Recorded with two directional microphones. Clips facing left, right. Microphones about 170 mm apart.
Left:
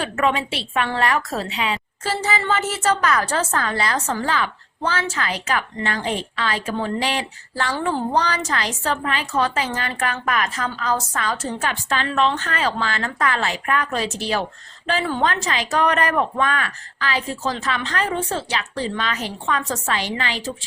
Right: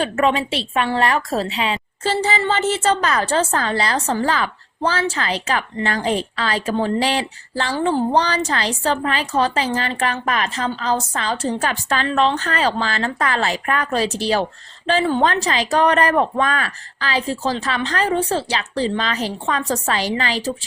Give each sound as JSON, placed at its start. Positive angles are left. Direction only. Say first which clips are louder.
{"t": 0.0, "sound": "a woman's voice", "louder": "right 3 dB", "side_deg": -25}